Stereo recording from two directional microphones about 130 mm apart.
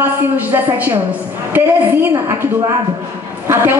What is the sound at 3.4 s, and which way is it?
Speech, 20° right (ahead or behind).